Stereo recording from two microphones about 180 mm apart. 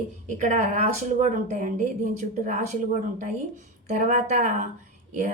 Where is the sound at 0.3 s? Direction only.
45° right (ahead or behind).